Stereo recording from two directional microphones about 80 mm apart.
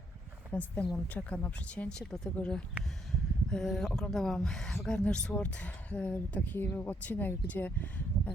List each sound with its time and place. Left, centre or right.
0.5 s speech: left